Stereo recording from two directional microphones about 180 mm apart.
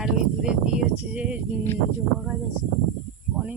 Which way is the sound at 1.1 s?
5° right (ahead or behind).